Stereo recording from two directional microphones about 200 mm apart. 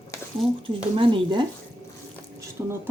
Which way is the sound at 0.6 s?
25° right (ahead or behind).